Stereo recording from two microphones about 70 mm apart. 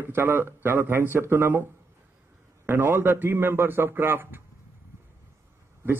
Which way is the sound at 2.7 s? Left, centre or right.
Right.